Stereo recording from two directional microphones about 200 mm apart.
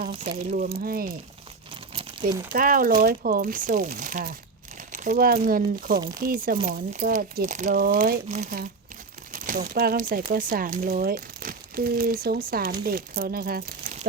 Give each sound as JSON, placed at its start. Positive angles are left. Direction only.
{"t": 0.5, "sound": "speech", "side_deg": -45}
{"t": 2.5, "sound": "speech", "side_deg": -45}